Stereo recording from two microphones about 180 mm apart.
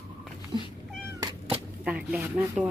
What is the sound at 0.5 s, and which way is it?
Cat, 25° right (ahead or behind).